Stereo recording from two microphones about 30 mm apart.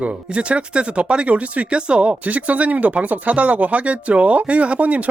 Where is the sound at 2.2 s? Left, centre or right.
Right.